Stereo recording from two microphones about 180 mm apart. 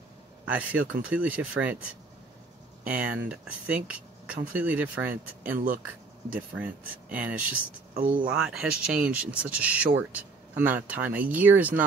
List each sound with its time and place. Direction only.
0.5 s speech: 10° right (ahead or behind)
7.5 s speech: 50° right (ahead or behind)
8.3 s speech: 5° right (ahead or behind)